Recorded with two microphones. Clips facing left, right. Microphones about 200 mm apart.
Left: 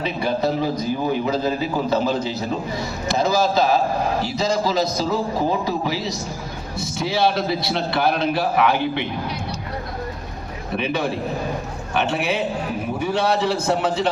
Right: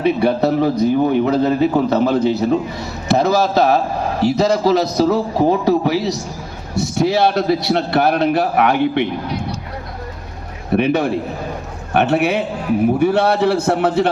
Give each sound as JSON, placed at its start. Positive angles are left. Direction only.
{"t": 0.0, "sound": "a man's voice", "side_deg": -65}
{"t": 10.8, "sound": "a man's voice", "side_deg": -60}